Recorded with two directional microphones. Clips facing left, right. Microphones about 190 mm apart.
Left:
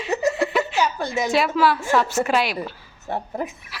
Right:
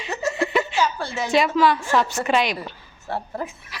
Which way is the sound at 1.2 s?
5° left (ahead or behind).